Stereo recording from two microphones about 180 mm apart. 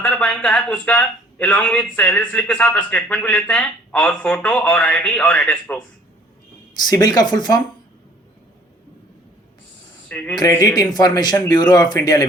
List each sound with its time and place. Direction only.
0.0 s a man's voice: 5° left (ahead or behind)
6.8 s a man's voice: 20° left (ahead or behind)
10.1 s speech: 10° left (ahead or behind)
10.3 s a man's voice: 20° left (ahead or behind)